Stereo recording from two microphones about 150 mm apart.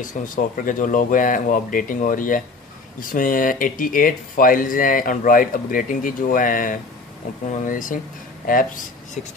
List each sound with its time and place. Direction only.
0.0 s speech: 60° left (ahead or behind)